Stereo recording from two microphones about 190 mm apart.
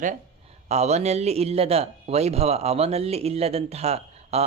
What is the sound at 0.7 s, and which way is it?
A man's voice, 35° right (ahead or behind).